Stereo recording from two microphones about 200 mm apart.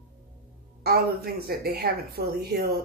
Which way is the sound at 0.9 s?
50° right (ahead or behind).